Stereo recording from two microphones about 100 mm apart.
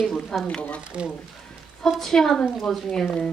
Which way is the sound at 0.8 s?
10° right (ahead or behind).